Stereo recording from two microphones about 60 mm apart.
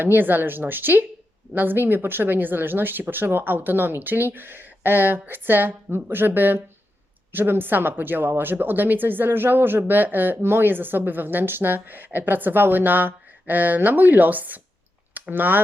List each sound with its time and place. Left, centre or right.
0.0 s speech: right